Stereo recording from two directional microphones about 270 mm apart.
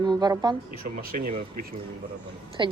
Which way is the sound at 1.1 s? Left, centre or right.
Right.